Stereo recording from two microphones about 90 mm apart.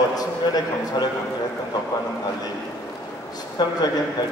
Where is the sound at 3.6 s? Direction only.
55° left (ahead or behind).